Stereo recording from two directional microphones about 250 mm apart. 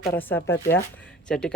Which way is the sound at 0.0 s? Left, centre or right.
Centre.